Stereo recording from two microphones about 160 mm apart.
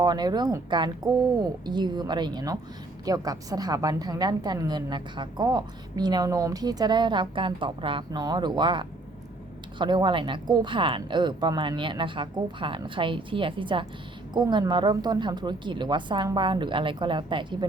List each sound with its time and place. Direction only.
0.0 s a woman's voice: 25° right (ahead or behind)